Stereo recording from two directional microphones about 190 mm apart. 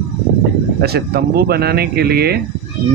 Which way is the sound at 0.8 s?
55° right (ahead or behind).